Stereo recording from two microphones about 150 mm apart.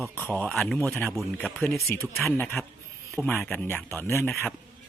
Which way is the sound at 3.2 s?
15° right (ahead or behind).